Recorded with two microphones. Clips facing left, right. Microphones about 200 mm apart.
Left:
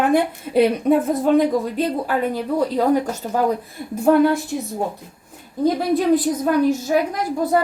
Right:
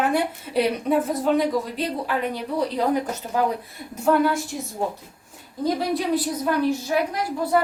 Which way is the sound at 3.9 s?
55° left (ahead or behind).